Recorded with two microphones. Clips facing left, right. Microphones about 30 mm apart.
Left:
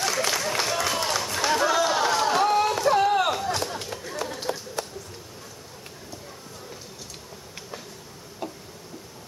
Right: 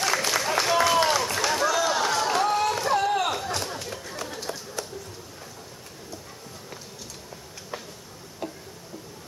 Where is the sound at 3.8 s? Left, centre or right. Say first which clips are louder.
Left 3 dB; centre.